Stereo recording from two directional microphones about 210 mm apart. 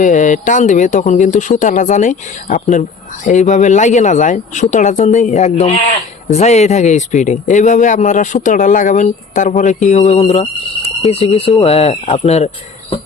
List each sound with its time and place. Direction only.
0.0 s speech: 35° left (ahead or behind)